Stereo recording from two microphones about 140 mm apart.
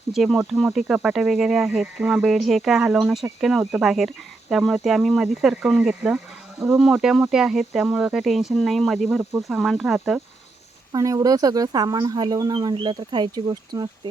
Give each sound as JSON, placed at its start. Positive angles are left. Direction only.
{"t": 0.1, "sound": "speech", "side_deg": 0}
{"t": 9.0, "sound": "speech", "side_deg": -10}
{"t": 10.9, "sound": "speech", "side_deg": -25}